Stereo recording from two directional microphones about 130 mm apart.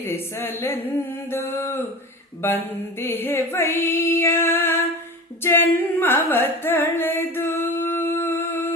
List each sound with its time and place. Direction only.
0.0 s a sound: 20° left (ahead or behind)
1.3 s female singing: 20° left (ahead or behind)
3.0 s female singing: 15° left (ahead or behind)
5.4 s carnatic music: 20° left (ahead or behind)